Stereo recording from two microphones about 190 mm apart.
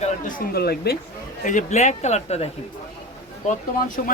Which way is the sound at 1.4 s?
40° left (ahead or behind).